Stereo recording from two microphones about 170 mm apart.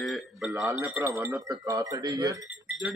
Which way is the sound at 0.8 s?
5° right (ahead or behind).